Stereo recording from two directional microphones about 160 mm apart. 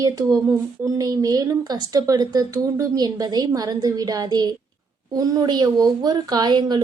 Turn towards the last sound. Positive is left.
turn(degrees=-25)  # may be behind; listen again after turning